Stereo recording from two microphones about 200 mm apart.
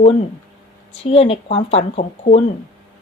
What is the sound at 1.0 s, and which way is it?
A woman's voice, 30° left (ahead or behind).